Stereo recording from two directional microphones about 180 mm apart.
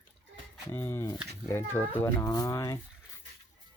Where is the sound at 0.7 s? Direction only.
15° left (ahead or behind).